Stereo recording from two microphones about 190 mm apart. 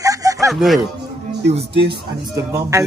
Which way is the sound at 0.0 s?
15° right (ahead or behind).